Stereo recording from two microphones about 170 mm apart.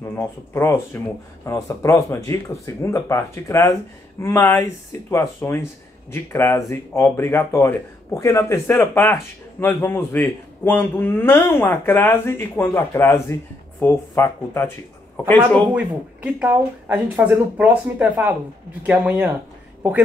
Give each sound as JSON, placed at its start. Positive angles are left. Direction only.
{"t": 0.0, "sound": "speech", "side_deg": 15}
{"t": 15.7, "sound": "speech", "side_deg": -10}